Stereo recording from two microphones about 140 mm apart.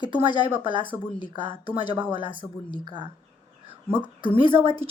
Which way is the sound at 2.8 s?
35° right (ahead or behind).